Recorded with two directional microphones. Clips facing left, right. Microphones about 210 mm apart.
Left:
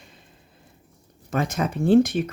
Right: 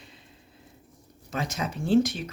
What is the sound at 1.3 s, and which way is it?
Speech, 55° left (ahead or behind).